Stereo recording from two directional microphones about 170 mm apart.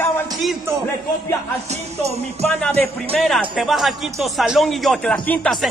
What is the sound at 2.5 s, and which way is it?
Speech, 5° left (ahead or behind).